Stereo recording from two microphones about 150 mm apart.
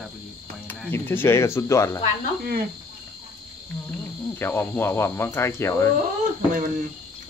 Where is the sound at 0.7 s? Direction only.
15° left (ahead or behind).